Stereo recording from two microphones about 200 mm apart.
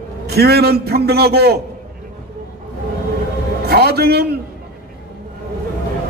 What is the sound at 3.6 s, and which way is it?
Speech, 50° right (ahead or behind).